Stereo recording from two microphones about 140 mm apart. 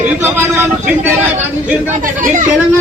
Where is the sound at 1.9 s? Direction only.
60° right (ahead or behind).